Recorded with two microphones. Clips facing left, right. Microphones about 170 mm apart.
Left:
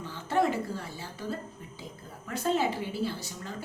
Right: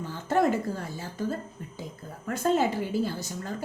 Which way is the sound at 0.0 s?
45° right (ahead or behind).